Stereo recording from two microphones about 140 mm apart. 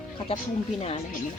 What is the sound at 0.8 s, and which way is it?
Speech, 45° left (ahead or behind).